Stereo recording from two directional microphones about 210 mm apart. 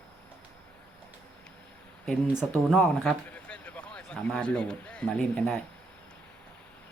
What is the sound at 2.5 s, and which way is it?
A man's voice, 10° left (ahead or behind).